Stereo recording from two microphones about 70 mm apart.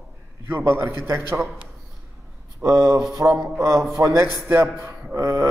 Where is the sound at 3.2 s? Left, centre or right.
Right.